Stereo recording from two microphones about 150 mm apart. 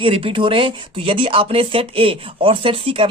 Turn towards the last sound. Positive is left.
turn(degrees=-35)  # may be behind; listen again after turning